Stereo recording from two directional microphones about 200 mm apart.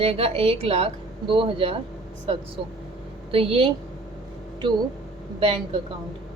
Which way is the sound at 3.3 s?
30° right (ahead or behind).